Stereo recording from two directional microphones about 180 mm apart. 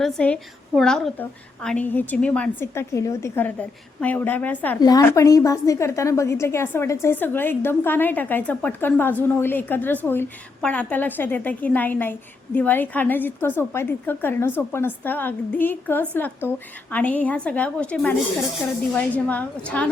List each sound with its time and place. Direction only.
0.0 s a woman's voice: 5° left (ahead or behind)
4.8 s a woman's voice: 20° left (ahead or behind)